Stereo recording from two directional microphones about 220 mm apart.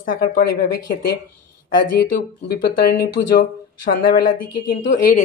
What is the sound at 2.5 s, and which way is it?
A woman's voice, 45° left (ahead or behind).